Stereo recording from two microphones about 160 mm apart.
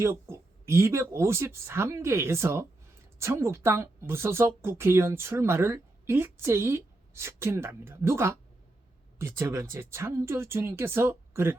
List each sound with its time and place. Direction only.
0.0 s a woman's voice: 15° right (ahead or behind)